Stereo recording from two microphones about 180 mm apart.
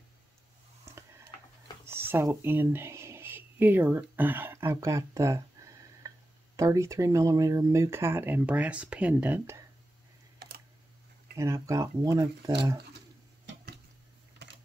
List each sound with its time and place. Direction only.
1.9 s speech: 10° right (ahead or behind)
11.3 s speech: 15° right (ahead or behind)